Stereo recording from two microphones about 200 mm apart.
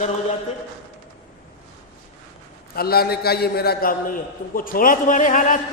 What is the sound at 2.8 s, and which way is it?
A man's voice, 50° left (ahead or behind).